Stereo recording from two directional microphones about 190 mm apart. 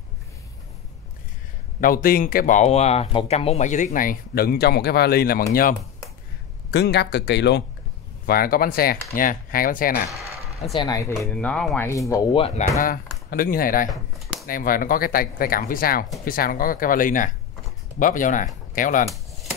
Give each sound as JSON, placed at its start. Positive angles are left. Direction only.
{"t": 1.8, "sound": "speech", "side_deg": 50}
{"t": 6.7, "sound": "speech", "side_deg": 60}
{"t": 8.3, "sound": "speech", "side_deg": 50}
{"t": 10.1, "sound": "a sound", "side_deg": 0}
{"t": 10.8, "sound": "speech", "side_deg": 20}
{"t": 11.2, "sound": "speech", "side_deg": 5}
{"t": 12.1, "sound": "speech", "side_deg": 20}
{"t": 12.8, "sound": "speech", "side_deg": 50}